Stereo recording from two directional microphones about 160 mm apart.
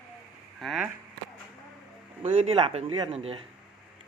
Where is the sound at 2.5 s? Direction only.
35° right (ahead or behind).